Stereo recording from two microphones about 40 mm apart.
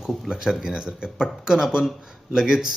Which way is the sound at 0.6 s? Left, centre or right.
Centre.